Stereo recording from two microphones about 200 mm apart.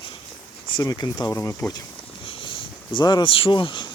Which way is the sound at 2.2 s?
25° left (ahead or behind).